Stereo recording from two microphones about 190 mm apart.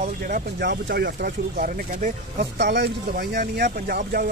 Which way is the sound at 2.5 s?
65° right (ahead or behind).